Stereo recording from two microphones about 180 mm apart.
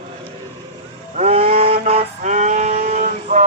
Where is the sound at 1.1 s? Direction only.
35° right (ahead or behind).